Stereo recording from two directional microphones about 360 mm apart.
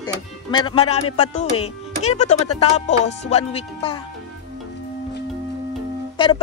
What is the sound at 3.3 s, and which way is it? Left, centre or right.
Speech, centre.